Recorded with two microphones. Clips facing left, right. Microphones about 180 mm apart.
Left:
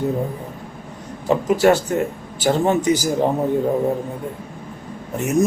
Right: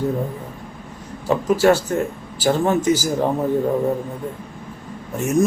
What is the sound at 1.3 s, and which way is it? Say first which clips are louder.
Speech: even; 20° left (ahead or behind).